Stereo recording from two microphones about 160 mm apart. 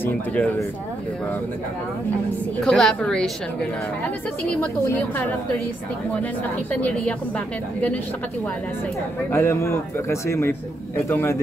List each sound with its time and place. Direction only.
0.0 s a woman's voice: 10° left (ahead or behind)
2.6 s a woman's voice: 5° left (ahead or behind)
4.5 s a woman's voice: 10° left (ahead or behind)
6.7 s a woman's voice: 10° left (ahead or behind)
9.3 s a woman's voice: 15° left (ahead or behind)